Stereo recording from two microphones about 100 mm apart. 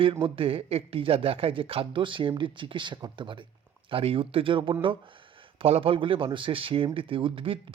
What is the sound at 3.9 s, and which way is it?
Speech, 65° right (ahead or behind).